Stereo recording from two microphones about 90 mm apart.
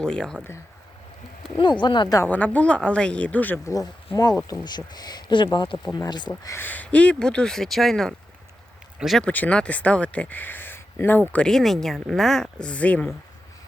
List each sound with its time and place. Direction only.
0.0 s speech: 10° left (ahead or behind)
1.5 s speech: 65° left (ahead or behind)
2.2 s speech: 20° left (ahead or behind)
3.7 s speech: 45° left (ahead or behind)
6.5 s speech: 20° left (ahead or behind); by 9.2 s centre (ahead or behind)
9.2 s speech: 15° left (ahead or behind)